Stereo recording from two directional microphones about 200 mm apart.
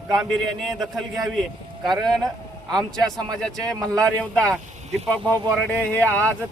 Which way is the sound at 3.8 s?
15° right (ahead or behind).